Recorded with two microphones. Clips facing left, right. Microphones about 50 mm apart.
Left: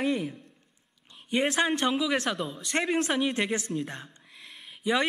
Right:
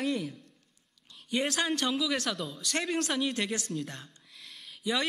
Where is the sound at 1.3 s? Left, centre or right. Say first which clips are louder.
Left 4 dB; left.